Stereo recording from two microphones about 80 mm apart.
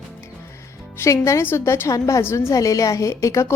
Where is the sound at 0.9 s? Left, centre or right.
Left.